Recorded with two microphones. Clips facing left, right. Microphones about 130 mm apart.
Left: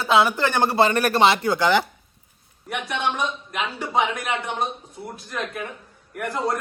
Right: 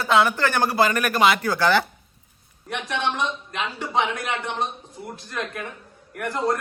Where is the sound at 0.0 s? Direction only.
25° left (ahead or behind).